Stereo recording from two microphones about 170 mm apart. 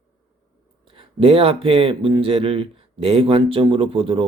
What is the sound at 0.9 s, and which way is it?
A man's voice, 35° right (ahead or behind).